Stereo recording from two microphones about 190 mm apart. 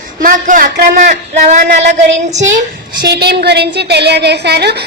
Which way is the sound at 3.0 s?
60° right (ahead or behind).